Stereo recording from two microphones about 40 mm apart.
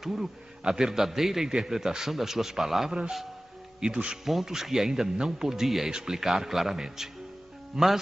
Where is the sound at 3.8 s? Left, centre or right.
Right.